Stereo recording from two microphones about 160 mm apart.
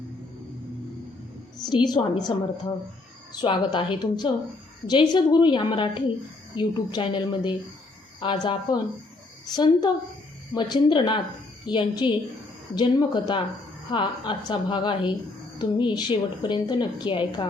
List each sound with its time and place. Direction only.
1.6 s a woman's voice: 25° left (ahead or behind)